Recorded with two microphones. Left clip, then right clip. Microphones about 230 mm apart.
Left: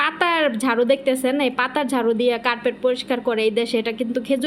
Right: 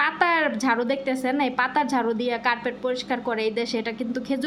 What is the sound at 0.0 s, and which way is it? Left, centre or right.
A woman's voice, centre.